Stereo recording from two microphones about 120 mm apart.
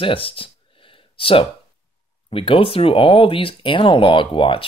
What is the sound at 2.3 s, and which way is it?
Speech, 50° left (ahead or behind).